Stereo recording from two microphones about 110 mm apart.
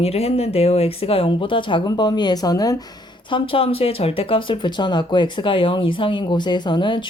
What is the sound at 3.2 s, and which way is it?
Speech, 50° left (ahead or behind).